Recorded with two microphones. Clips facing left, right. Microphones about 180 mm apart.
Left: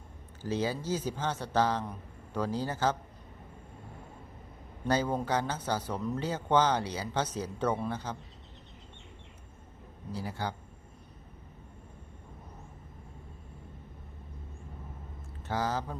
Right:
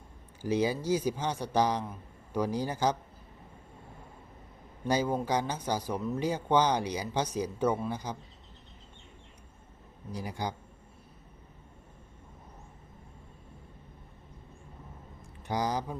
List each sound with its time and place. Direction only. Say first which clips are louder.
0.4 s a man's voice: right 3 dB; 15° right (ahead or behind)
4.9 s speech: right 1 dB; 10° right (ahead or behind)
10.1 s speech: even; 15° right (ahead or behind)
15.4 s speech: right 1 dB; 15° right (ahead or behind)